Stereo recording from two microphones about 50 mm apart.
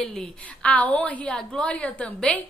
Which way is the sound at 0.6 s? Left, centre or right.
Left.